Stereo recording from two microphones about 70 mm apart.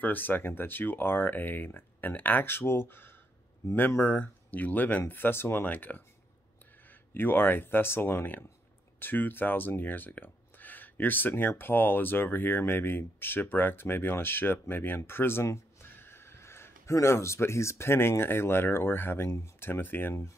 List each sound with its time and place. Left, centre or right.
0.0 s speech: left